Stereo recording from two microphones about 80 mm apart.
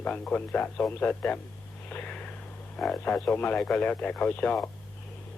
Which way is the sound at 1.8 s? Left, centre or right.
Centre.